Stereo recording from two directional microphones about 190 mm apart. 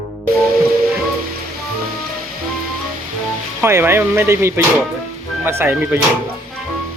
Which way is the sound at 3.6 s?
10° right (ahead or behind).